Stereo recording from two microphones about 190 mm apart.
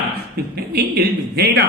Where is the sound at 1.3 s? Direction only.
55° right (ahead or behind).